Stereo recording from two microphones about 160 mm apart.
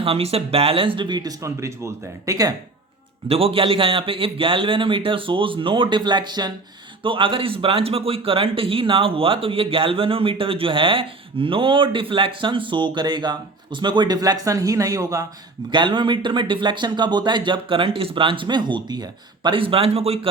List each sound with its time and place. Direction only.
0.0 s speech: 35° right (ahead or behind); by 2.5 s 20° right (ahead or behind)
3.2 s a man's voice: 35° right (ahead or behind)